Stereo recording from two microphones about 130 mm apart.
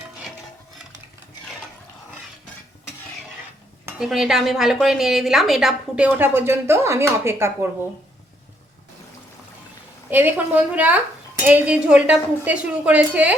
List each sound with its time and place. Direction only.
3.9 s speech: 5° right (ahead or behind)
6.1 s speech: 15° right (ahead or behind)
10.1 s speech: 15° right (ahead or behind)